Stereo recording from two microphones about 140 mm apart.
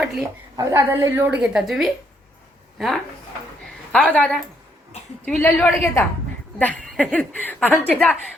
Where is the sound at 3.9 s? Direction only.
10° left (ahead or behind).